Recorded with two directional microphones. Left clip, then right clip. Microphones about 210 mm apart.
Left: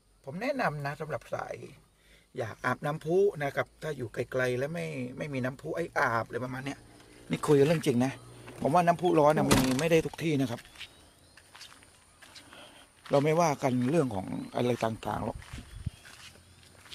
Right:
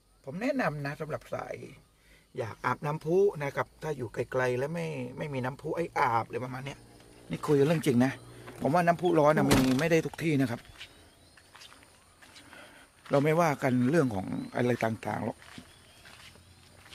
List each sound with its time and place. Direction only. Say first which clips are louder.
0.3 s speech: even; 10° right (ahead or behind)
7.8 s speech: right 2 dB; 15° right (ahead or behind)
10.6 s speech: left 2 dB; 50° left (ahead or behind)
12.5 s speech: even; centre (ahead or behind)